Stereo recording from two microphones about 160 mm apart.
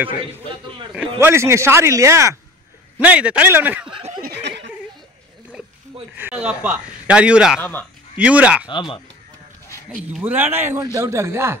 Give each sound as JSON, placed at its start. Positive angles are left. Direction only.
{"t": 0.9, "sound": "a man's voice", "side_deg": -15}
{"t": 3.0, "sound": "a man's voice", "side_deg": -5}
{"t": 4.2, "sound": "snicker", "side_deg": -90}
{"t": 6.1, "sound": "a man's voice", "side_deg": -10}
{"t": 8.6, "sound": "speech", "side_deg": 30}
{"t": 10.1, "sound": "a man's voice", "side_deg": -10}